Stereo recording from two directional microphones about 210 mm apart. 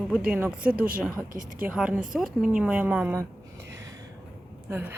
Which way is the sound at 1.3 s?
40° right (ahead or behind).